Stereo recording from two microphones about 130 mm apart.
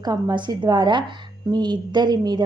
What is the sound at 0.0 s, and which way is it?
A woman's voice, 30° right (ahead or behind).